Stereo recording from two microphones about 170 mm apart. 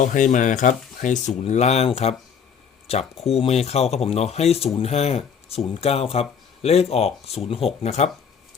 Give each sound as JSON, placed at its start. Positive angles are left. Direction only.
{"t": 0.0, "sound": "speech", "side_deg": 50}